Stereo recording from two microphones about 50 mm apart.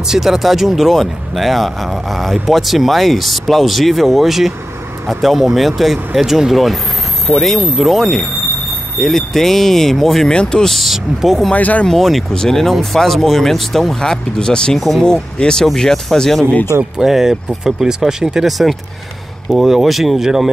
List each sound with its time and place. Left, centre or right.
0.1 s speech: centre
10.2 s speech: centre
10.7 s speech: centre
11.5 s speech: left
11.9 s speech: centre
14.8 s speech: centre
15.0 s speech: centre
17.0 s speech: centre
19.5 s speech: centre